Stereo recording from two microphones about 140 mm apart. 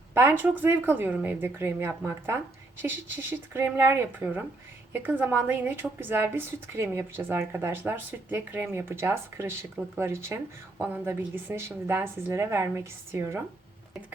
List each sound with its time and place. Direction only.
0.1 s a woman's voice: 20° right (ahead or behind)